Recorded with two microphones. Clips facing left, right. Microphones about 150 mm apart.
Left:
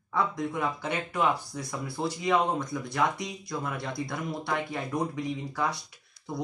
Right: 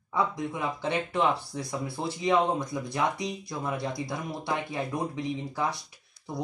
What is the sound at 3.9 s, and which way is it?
Speech, 20° right (ahead or behind).